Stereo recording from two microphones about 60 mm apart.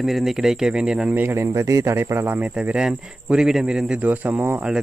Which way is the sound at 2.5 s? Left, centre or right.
Centre.